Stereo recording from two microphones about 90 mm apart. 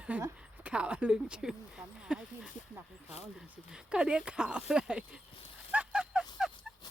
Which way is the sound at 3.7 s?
10° right (ahead or behind).